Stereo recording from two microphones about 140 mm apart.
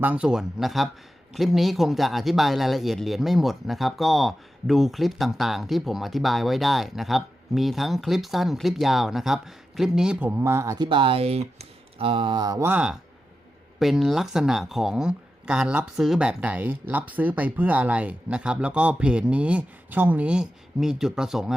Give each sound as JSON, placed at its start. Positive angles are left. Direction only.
{"t": 0.0, "sound": "a man's voice", "side_deg": -10}
{"t": 10.8, "sound": "speech", "side_deg": -35}
{"t": 12.6, "sound": "speech", "side_deg": -10}